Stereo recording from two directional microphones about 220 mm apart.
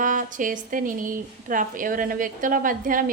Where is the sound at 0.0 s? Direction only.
35° right (ahead or behind).